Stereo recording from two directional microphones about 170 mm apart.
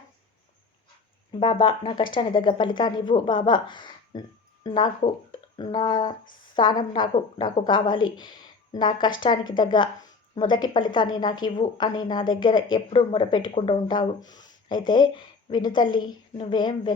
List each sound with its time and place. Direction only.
1.3 s speech: 30° left (ahead or behind)